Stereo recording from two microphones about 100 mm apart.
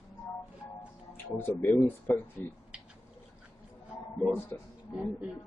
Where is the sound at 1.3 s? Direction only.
25° left (ahead or behind).